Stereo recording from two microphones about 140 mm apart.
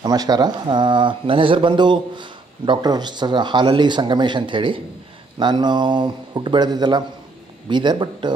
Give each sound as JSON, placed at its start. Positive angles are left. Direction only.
{"t": 0.0, "sound": "speech", "side_deg": -30}